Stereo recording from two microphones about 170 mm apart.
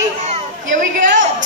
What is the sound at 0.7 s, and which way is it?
Speech, 50° right (ahead or behind).